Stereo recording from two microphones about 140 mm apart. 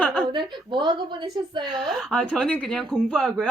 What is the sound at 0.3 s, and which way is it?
Speech, 35° right (ahead or behind).